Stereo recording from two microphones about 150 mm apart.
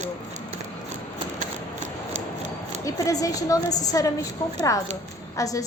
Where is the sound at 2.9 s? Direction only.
20° left (ahead or behind).